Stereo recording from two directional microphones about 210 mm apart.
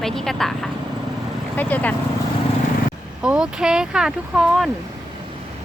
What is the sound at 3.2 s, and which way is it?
Speech, 5° right (ahead or behind).